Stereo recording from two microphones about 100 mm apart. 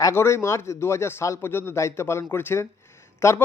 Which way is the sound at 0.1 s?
25° left (ahead or behind).